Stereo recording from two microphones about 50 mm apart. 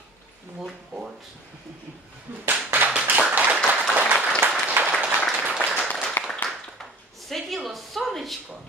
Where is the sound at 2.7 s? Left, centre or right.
Right.